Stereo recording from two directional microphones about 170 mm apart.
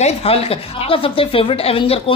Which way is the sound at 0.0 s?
35° left (ahead or behind).